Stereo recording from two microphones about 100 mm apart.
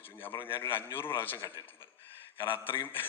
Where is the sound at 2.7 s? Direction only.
20° left (ahead or behind).